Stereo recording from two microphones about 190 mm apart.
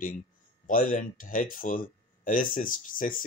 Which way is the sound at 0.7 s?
45° left (ahead or behind).